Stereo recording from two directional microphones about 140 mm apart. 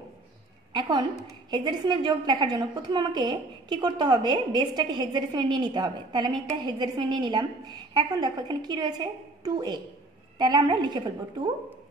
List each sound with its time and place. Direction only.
0.7 s a woman's voice: 30° right (ahead or behind)